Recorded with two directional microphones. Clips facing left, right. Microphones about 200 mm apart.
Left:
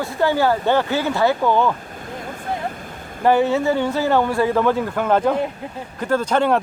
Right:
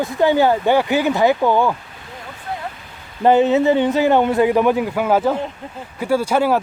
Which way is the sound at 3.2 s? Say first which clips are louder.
Right 3 dB; 20° right (ahead or behind).